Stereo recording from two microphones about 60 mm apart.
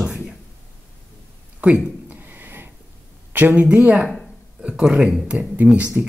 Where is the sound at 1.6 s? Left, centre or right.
Right.